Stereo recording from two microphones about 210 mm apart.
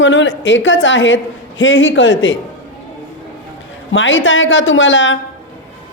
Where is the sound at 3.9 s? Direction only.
65° left (ahead or behind).